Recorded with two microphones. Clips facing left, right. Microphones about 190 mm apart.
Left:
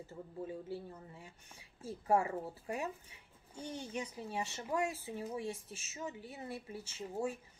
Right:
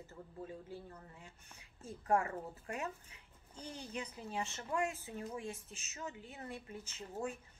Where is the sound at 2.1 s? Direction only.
25° left (ahead or behind).